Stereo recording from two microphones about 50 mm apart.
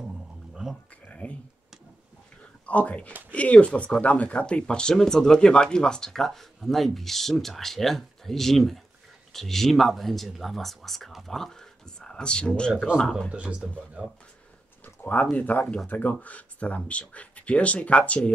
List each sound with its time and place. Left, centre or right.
1.0 s a sound: left
2.6 s speech: left; by 11.5 s centre
12.0 s speech: centre
13.3 s speech: right
15.3 s speech: left